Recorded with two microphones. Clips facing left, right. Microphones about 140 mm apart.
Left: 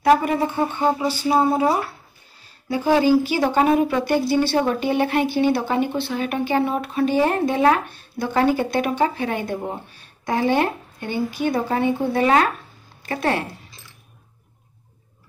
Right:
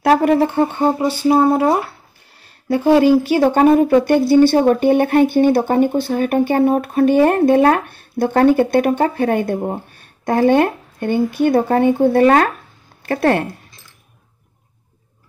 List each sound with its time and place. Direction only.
0.0 s speech: 70° right (ahead or behind)
2.4 s a sound: 60° right (ahead or behind)
3.3 s a woman's voice: 50° right (ahead or behind)